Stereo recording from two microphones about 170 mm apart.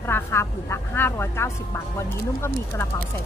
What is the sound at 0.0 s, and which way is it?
Speech, 15° left (ahead or behind).